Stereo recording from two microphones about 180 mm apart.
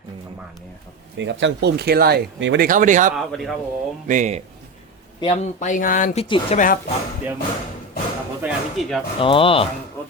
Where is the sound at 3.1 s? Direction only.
Centre (ahead or behind).